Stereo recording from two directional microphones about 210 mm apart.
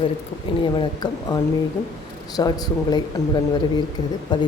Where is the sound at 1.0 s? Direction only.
20° left (ahead or behind).